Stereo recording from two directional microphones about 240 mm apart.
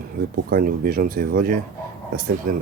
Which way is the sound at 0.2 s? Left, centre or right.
Right.